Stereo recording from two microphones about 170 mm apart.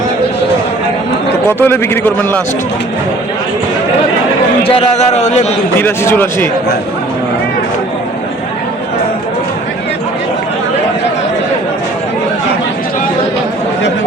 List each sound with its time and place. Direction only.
1.5 s speech: 15° left (ahead or behind)
4.7 s a man's voice: 35° left (ahead or behind)
5.8 s speech: 10° left (ahead or behind)